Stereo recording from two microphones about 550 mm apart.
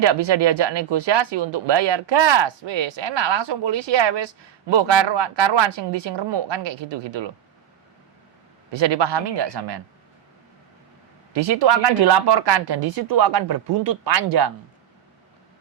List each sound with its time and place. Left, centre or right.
0.0 s speech: right
8.7 s speech: right
11.3 s speech: right